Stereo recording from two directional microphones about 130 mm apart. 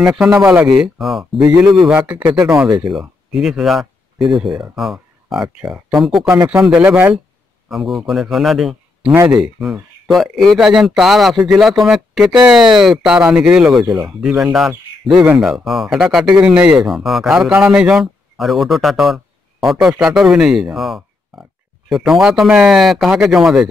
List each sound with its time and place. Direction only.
0.4 s speech: 5° right (ahead or behind)
2.3 s a man's voice: 25° right (ahead or behind)
2.9 s speech: 5° right (ahead or behind)
6.2 s a man's voice: 20° right (ahead or behind)
6.6 s speech: 10° right (ahead or behind)
7.7 s speech: centre (ahead or behind)